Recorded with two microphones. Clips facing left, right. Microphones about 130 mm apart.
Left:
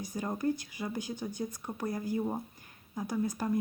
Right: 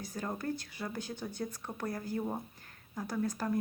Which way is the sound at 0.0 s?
15° left (ahead or behind).